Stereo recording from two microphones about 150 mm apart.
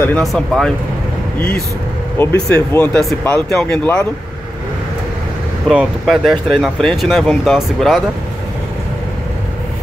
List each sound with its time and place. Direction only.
0.0 s speech: 5° left (ahead or behind)
2.1 s speech: 15° left (ahead or behind)
5.7 s speech: 5° right (ahead or behind)